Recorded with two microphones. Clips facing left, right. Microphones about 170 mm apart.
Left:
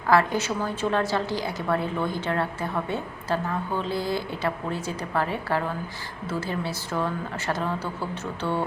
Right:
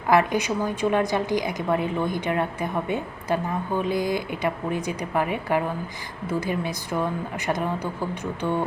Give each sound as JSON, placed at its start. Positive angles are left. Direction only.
{"t": 0.1, "sound": "a woman's voice", "side_deg": -15}